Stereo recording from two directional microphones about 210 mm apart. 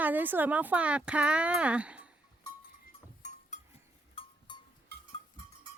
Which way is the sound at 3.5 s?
35° left (ahead or behind).